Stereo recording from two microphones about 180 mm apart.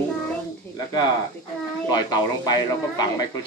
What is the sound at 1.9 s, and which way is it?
Speech, 20° left (ahead or behind).